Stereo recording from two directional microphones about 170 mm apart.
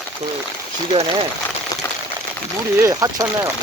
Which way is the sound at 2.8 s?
20° right (ahead or behind).